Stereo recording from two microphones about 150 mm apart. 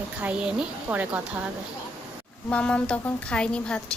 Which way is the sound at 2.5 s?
10° left (ahead or behind).